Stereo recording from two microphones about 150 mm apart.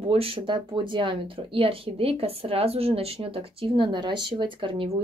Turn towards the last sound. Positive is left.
turn(degrees=-35)  # may be behind; listen again after turning